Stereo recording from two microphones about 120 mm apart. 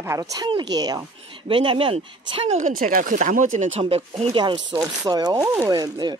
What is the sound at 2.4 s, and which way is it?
Speech, 85° right.